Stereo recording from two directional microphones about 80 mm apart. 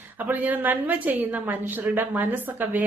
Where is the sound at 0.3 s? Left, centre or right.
Right.